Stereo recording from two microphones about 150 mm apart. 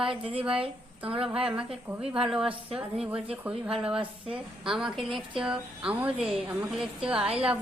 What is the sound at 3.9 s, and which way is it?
Speech, 35° right (ahead or behind).